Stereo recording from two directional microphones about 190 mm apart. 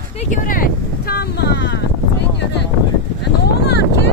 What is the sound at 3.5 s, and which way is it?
Vehicle, 60° left (ahead or behind).